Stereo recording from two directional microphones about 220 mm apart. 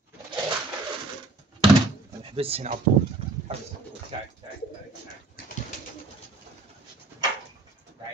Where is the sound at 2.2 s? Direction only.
25° right (ahead or behind).